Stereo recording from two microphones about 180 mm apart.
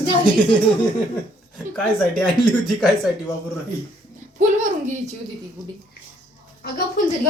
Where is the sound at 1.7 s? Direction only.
5° left (ahead or behind).